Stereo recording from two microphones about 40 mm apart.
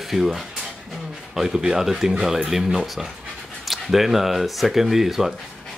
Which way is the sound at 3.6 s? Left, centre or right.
Centre.